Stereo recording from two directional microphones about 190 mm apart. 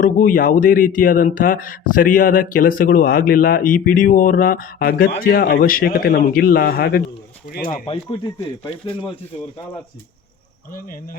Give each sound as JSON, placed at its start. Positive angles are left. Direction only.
{"t": 0.0, "sound": "speech", "side_deg": 45}
{"t": 7.7, "sound": "speech", "side_deg": 25}